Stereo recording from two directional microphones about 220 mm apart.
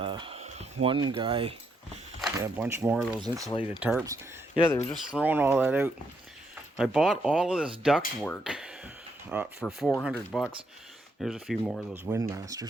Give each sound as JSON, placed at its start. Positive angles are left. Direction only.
{"t": 0.0, "sound": "a sound", "side_deg": -25}
{"t": 1.1, "sound": "speech", "side_deg": -25}
{"t": 2.4, "sound": "speech", "side_deg": -10}
{"t": 3.2, "sound": "speech", "side_deg": -15}
{"t": 3.6, "sound": "speech", "side_deg": -5}
{"t": 12.0, "sound": "speech", "side_deg": -15}